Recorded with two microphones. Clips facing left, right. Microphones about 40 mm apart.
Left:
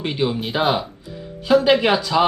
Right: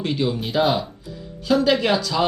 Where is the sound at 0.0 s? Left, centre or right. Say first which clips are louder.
Left 1 dB; left.